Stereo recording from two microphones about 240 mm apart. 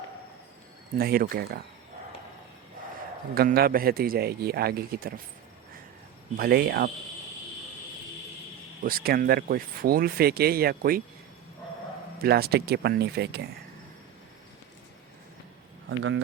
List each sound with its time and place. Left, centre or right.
0.9 s speech: right
3.3 s speech: right
6.3 s speech: right
8.8 s speech: right
12.2 s speech: right
15.9 s speech: right